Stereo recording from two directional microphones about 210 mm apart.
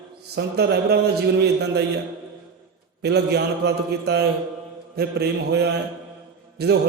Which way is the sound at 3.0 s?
50° right (ahead or behind).